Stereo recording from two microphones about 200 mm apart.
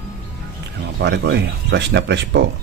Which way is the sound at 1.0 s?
55° right (ahead or behind).